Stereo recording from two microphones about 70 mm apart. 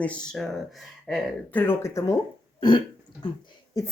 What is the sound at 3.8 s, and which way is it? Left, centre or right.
Speech, left.